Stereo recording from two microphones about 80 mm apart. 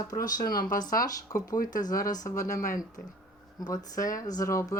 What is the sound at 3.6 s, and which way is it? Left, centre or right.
Speech, left.